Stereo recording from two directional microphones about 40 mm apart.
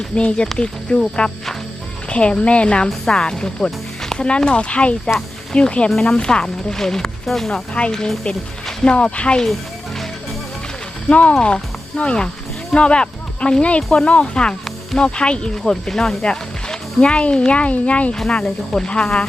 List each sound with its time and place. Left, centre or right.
0.1 s speech: left; by 7.5 s centre
7.5 s speech: left
11.1 s speech: left
18.4 s speech: centre